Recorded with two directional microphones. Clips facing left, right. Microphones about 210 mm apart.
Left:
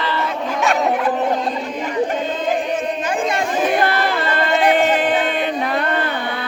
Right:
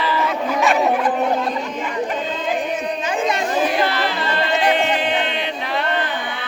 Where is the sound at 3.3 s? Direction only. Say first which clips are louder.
Left 1 dB; 50° left (ahead or behind).